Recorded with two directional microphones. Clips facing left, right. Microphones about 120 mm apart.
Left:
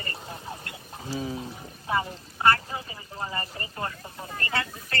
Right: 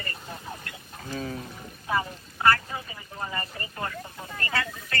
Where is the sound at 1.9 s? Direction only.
25° left (ahead or behind).